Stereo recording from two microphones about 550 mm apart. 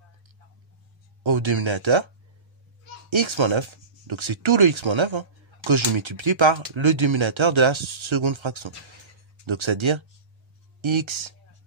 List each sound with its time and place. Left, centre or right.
1.2 s speech: right
3.1 s speech: right